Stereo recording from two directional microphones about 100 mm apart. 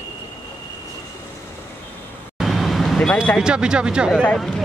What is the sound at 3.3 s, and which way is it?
Speech, 10° right (ahead or behind).